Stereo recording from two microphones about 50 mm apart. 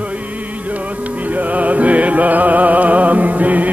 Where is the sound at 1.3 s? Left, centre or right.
Right.